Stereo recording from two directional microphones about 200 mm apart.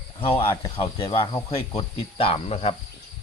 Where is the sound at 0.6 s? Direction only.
30° left (ahead or behind).